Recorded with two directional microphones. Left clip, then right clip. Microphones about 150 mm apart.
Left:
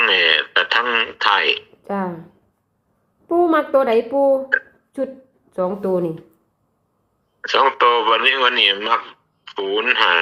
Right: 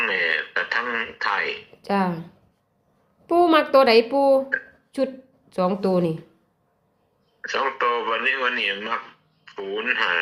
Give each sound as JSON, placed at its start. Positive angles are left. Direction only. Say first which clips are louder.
{"t": 0.0, "sound": "a sound", "louder": "left 7 dB", "side_deg": 15}
{"t": 1.8, "sound": "speech", "louder": "right 1 dB", "side_deg": -15}
{"t": 3.2, "sound": "speech", "louder": "left 1 dB", "side_deg": -10}
{"t": 5.6, "sound": "speech", "louder": "left 1 dB", "side_deg": -10}
{"t": 7.4, "sound": "speech", "louder": "left 8 dB", "side_deg": 15}